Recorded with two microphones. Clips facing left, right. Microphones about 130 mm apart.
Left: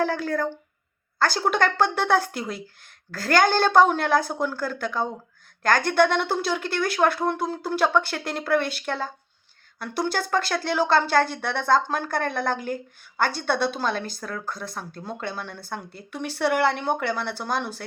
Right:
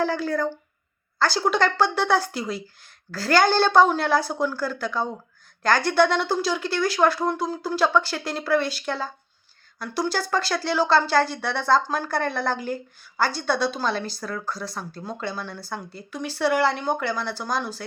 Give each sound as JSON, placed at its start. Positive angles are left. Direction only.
{"t": 0.0, "sound": "a woman's voice", "side_deg": 55}